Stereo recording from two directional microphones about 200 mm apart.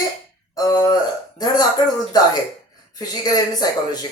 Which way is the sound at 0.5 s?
15° left (ahead or behind).